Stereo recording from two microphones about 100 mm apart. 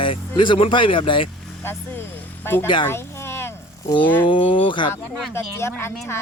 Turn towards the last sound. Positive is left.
turn(degrees=25)  # may be behind; listen again after turning